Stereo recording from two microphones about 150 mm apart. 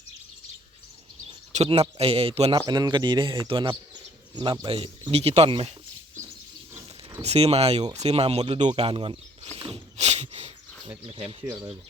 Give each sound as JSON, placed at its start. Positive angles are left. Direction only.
{"t": 1.5, "sound": "a man's voice", "side_deg": -45}
{"t": 2.6, "sound": "a man's voice", "side_deg": -25}
{"t": 7.2, "sound": "a man's voice", "side_deg": -45}
{"t": 9.6, "sound": "a sound", "side_deg": -35}
{"t": 11.4, "sound": "speech", "side_deg": -25}